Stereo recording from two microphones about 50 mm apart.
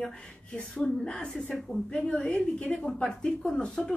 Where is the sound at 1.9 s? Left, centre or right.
Centre.